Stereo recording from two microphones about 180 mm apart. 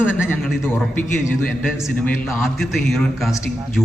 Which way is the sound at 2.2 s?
Centre (ahead or behind).